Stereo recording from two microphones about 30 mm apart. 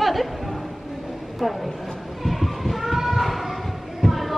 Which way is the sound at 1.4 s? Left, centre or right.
Centre.